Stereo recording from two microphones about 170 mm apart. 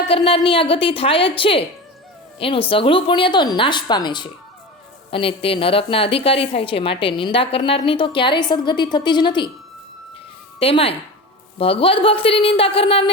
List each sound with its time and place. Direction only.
0.1 s a woman's voice: 30° left (ahead or behind)
10.6 s a woman's voice: 35° left (ahead or behind)